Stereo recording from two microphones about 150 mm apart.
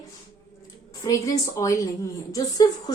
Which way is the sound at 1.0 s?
20° left (ahead or behind).